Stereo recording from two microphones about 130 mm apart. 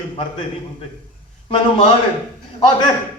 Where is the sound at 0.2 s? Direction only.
40° left (ahead or behind).